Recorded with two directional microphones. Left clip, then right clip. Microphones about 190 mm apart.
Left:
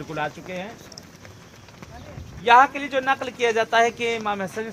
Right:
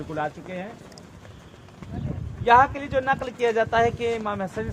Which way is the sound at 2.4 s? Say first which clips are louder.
Left 2 dB; 15° left (ahead or behind).